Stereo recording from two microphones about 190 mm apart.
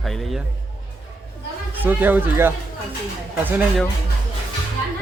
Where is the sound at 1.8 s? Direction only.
10° right (ahead or behind).